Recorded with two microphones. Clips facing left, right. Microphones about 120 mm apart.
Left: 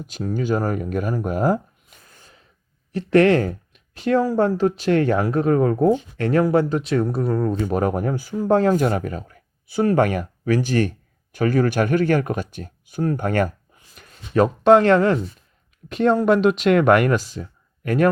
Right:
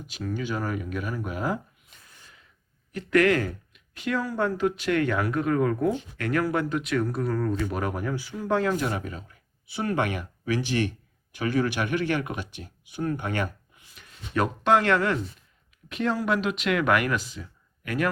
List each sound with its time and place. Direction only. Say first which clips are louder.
0.1 s speech: left 8 dB; 40° left (ahead or behind)